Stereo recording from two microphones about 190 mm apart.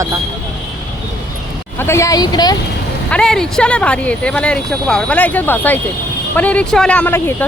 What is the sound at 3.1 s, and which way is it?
Speech, 5° left (ahead or behind).